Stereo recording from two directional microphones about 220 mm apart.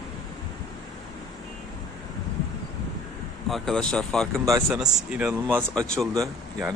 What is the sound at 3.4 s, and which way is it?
Speech, centre (ahead or behind).